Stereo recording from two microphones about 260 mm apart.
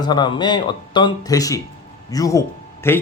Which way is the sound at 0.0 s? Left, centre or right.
Centre.